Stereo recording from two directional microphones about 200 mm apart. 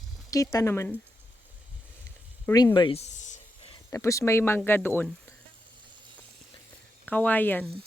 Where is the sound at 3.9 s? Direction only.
15° left (ahead or behind).